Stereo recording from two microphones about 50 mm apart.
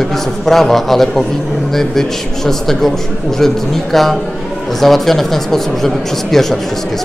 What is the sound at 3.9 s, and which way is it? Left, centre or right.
A man's voice, centre.